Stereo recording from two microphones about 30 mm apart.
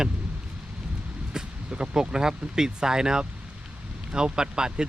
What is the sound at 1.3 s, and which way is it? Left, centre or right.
Vehicle, right.